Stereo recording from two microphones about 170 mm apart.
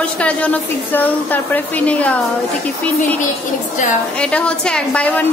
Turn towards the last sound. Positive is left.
turn(degrees=10)  # may be behind; listen again after turning